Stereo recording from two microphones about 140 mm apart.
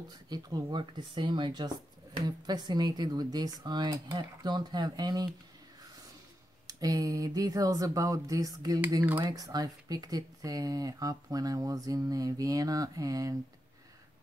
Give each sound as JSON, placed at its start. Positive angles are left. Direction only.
{"t": 0.3, "sound": "speech", "side_deg": -30}
{"t": 6.7, "sound": "speech", "side_deg": -25}